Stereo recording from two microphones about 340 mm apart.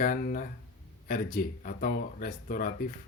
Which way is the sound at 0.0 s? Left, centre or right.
Left.